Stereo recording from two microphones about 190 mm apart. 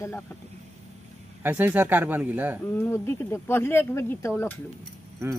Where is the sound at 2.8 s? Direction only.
10° left (ahead or behind).